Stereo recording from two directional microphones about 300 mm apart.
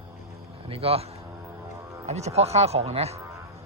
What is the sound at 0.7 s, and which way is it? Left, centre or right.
A man's voice, centre.